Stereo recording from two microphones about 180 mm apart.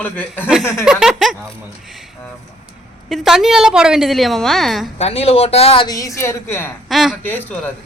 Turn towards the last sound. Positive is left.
turn(degrees=10)  # may be behind; listen again after turning